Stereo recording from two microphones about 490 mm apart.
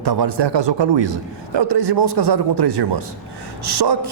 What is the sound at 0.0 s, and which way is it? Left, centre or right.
A man's voice, right.